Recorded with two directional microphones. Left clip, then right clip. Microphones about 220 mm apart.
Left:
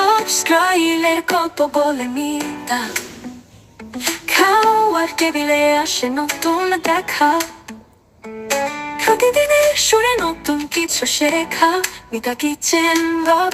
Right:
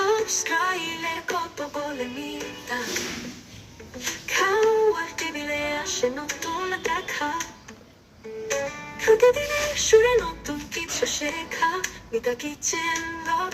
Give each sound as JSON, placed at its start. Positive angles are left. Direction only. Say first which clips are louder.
{"t": 0.0, "sound": "music", "louder": "left 8 dB", "side_deg": 50}
{"t": 3.9, "sound": "music", "louder": "left 9 dB", "side_deg": 50}